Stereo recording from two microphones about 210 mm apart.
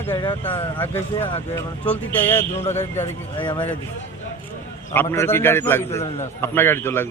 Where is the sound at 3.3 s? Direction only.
25° left (ahead or behind).